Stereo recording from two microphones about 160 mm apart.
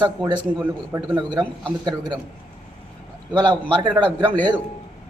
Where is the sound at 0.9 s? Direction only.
20° right (ahead or behind).